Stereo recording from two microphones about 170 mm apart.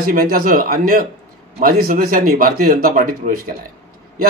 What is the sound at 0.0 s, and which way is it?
A man's voice, 60° right (ahead or behind).